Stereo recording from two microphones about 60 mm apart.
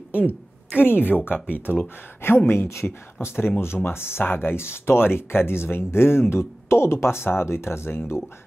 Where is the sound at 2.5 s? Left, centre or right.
Left.